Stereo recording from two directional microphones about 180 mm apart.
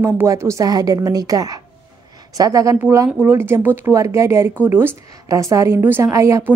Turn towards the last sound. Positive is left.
turn(degrees=-15)  # may be behind; listen again after turning